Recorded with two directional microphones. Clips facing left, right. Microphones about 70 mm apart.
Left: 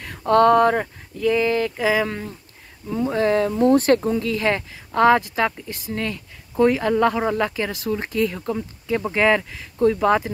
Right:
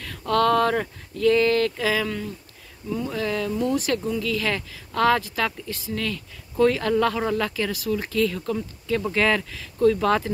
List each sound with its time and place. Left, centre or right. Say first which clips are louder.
0.0 s speech: left 6 dB; left